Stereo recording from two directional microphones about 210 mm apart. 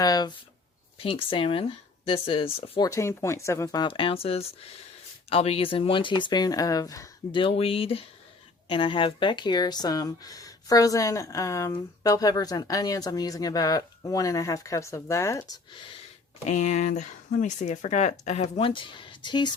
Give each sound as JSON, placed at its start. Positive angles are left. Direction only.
{"t": 0.0, "sound": "speech", "side_deg": 20}
{"t": 16.5, "sound": "speech", "side_deg": 35}